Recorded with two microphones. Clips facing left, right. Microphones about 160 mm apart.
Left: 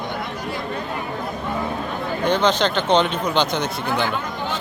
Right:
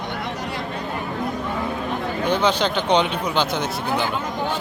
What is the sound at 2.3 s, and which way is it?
Speech, 10° right (ahead or behind).